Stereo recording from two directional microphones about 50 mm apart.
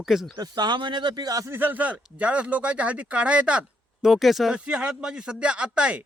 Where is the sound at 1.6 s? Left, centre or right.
Right.